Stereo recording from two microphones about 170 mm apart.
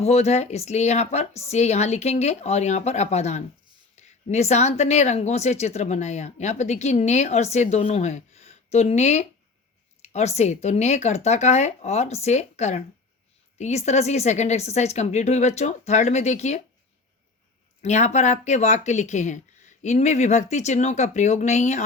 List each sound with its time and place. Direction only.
0.0 s speech: 40° left (ahead or behind)
17.8 s speech: 40° left (ahead or behind)